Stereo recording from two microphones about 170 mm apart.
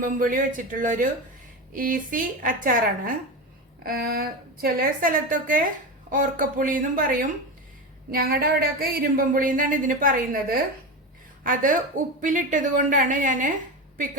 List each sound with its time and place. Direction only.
0.0 s a woman's voice: 55° right (ahead or behind)